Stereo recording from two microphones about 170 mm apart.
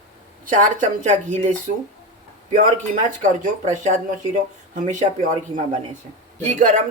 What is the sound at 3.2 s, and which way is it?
Speech, 45° right (ahead or behind).